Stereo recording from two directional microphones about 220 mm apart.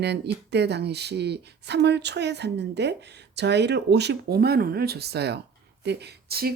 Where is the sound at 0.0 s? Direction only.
50° right (ahead or behind).